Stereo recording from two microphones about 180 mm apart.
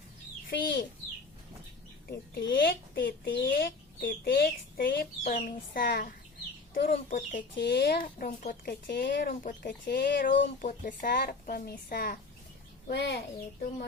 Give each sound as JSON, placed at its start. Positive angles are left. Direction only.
{"t": 0.5, "sound": "speech", "side_deg": 55}
{"t": 2.0, "sound": "a woman's voice", "side_deg": 55}
{"t": 7.5, "sound": "speech", "side_deg": 70}
{"t": 9.0, "sound": "speech", "side_deg": 70}
{"t": 9.3, "sound": "a woman's voice", "side_deg": 45}
{"t": 9.6, "sound": "speech", "side_deg": 70}
{"t": 10.6, "sound": "a woman's voice", "side_deg": 50}
{"t": 12.9, "sound": "speech", "side_deg": 70}